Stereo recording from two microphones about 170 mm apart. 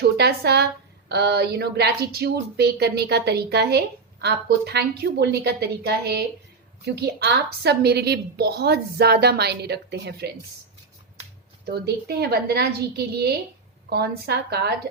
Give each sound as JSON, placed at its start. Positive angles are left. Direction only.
{"t": 0.0, "sound": "a woman's voice", "side_deg": -75}
{"t": 11.6, "sound": "a woman's voice", "side_deg": -70}